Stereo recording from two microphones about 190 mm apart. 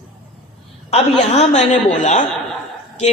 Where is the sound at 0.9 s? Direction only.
35° left (ahead or behind).